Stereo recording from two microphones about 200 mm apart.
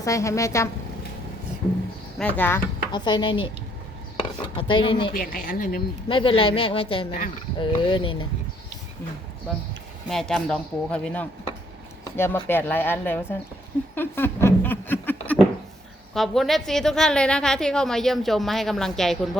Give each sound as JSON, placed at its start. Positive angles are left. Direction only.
{"t": 0.0, "sound": "speech", "side_deg": 15}
{"t": 2.1, "sound": "speech", "side_deg": 5}
{"t": 2.9, "sound": "a woman's voice", "side_deg": 20}
{"t": 5.1, "sound": "speech", "side_deg": 45}
{"t": 6.1, "sound": "a woman's voice", "side_deg": 25}
{"t": 10.1, "sound": "a woman's voice", "side_deg": 0}
{"t": 13.9, "sound": "a sound", "side_deg": 10}
{"t": 16.1, "sound": "a woman's voice", "side_deg": 0}